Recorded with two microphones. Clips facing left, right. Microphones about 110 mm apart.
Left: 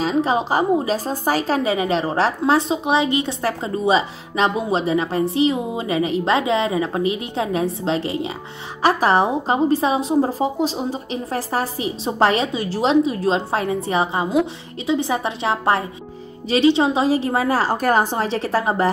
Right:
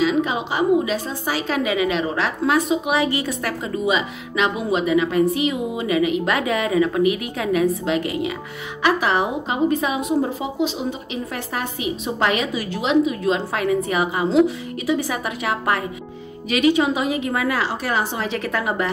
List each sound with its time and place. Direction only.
0.0 s a woman's voice: 35° left (ahead or behind)